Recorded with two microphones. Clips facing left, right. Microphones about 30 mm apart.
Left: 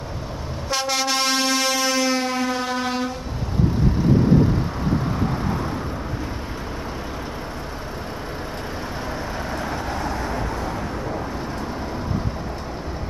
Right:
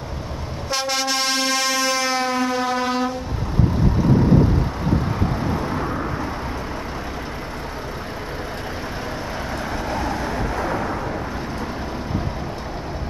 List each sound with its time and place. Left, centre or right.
0.7 s train: centre
9.8 s vehicle: right
10.6 s vehicle: right